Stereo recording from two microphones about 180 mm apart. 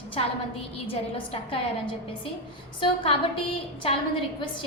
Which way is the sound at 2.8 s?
30° left (ahead or behind).